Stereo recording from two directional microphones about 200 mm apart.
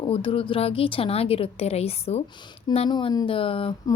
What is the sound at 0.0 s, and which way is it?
Speech, 25° left (ahead or behind).